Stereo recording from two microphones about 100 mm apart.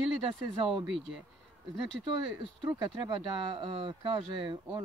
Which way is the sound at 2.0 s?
45° right (ahead or behind).